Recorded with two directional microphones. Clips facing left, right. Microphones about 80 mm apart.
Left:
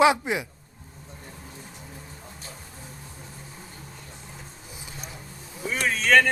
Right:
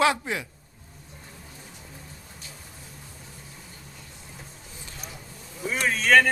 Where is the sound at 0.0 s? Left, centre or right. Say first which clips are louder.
Left 4 dB; centre.